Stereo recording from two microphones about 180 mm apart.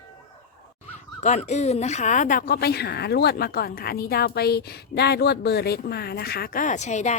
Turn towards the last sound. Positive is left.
turn(degrees=40)  # may be behind; listen again after turning